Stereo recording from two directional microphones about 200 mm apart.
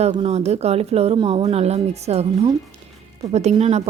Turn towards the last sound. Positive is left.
turn(degrees=-30)  # may be behind; listen again after turning